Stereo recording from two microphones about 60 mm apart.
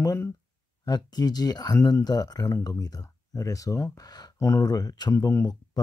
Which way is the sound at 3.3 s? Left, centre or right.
Left.